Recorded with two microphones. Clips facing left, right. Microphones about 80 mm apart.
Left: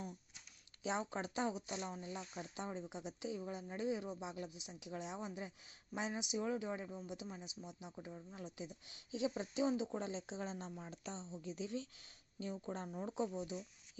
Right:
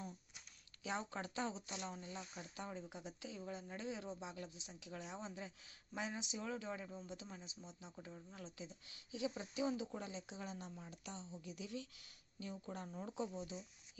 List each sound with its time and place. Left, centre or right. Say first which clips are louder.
0.8 s speech: left 4 dB; left